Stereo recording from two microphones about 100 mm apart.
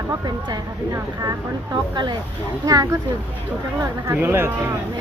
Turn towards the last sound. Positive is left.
turn(degrees=-25)  # may be behind; listen again after turning